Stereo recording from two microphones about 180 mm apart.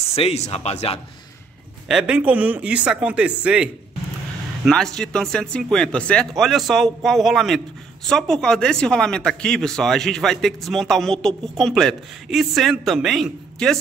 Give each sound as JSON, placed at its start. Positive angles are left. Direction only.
{"t": 0.0, "sound": "speech", "side_deg": 35}
{"t": 1.9, "sound": "speech", "side_deg": -5}